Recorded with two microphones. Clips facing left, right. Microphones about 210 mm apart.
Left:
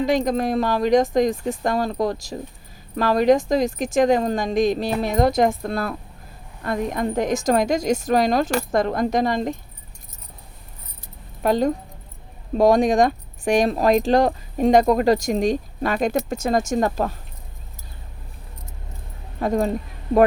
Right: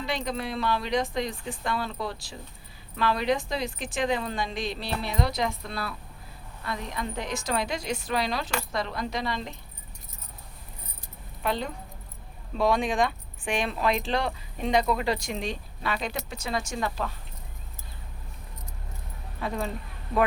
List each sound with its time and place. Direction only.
0.0 s speech: 45° left (ahead or behind)
11.4 s speech: 45° left (ahead or behind)
19.4 s speech: 40° left (ahead or behind)